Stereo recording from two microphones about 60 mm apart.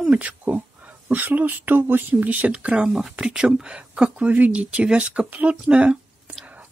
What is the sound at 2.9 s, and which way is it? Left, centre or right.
Speech, centre.